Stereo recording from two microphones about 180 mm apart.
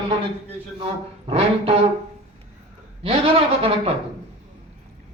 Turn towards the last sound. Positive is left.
turn(degrees=-30)  # may be behind; listen again after turning